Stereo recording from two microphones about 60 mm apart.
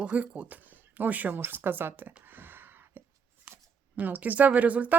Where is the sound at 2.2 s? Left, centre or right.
Right.